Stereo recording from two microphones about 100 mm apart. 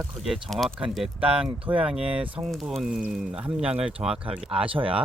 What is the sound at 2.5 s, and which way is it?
Speech, centre (ahead or behind).